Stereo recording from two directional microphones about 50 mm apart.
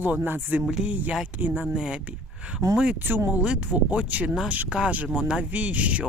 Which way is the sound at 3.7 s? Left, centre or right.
Right.